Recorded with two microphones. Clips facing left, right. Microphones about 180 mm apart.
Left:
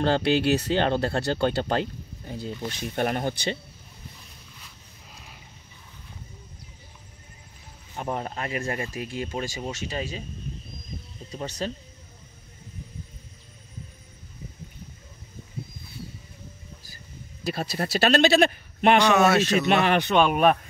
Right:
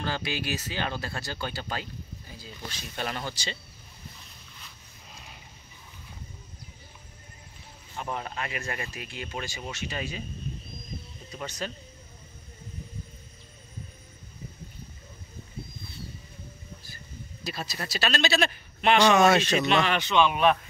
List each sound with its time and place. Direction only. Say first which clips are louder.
0.0 s speech: left 10 dB; 65° left (ahead or behind)
5.1 s a sound: even; centre (ahead or behind)
7.9 s speech: left 4 dB; 40° left (ahead or behind)
11.3 s speech: left 4 dB; 35° left (ahead or behind)
17.5 s speech: left 8 dB; 55° left (ahead or behind)
19.1 s speech: left 1 dB; 5° left (ahead or behind)
19.7 s speech: left 4 dB; 55° left (ahead or behind)